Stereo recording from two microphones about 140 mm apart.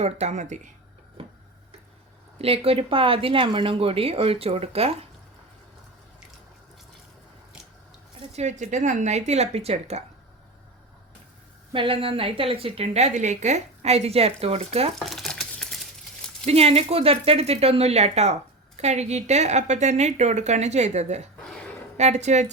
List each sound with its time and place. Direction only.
0.0 s speech: 50° right (ahead or behind)
2.4 s a woman's voice: 45° right (ahead or behind)
8.3 s a woman's voice: 55° right (ahead or behind)
11.7 s a woman's voice: 40° right (ahead or behind)
14.9 s stir: centre (ahead or behind)
16.5 s a woman's voice: 45° right (ahead or behind)